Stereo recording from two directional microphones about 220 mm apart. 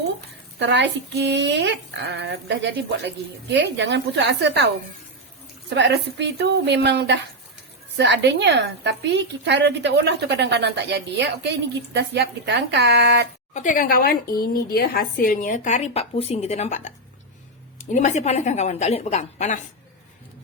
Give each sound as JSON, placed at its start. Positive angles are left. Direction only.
{"t": 0.6, "sound": "a woman's voice", "side_deg": -55}
{"t": 5.7, "sound": "a woman's voice", "side_deg": -55}
{"t": 13.5, "sound": "speech", "side_deg": 35}